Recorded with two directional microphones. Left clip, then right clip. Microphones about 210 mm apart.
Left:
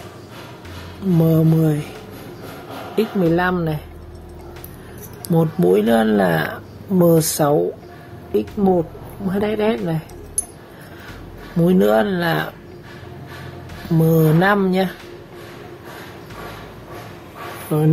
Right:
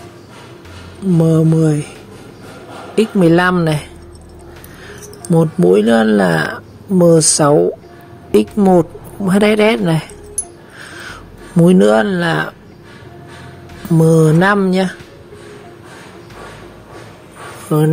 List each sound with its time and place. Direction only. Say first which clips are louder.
1.1 s speech: right 4 dB; 20° right (ahead or behind)
3.0 s speech: right 6 dB; 35° right (ahead or behind)
5.3 s speech: right 5 dB; 25° right (ahead or behind)
8.3 s speech: right 7 dB; 40° right (ahead or behind)
11.6 s speech: right 5 dB; 30° right (ahead or behind)
13.9 s speech: right 5 dB; 25° right (ahead or behind)
17.7 s speech: right 6 dB; 30° right (ahead or behind)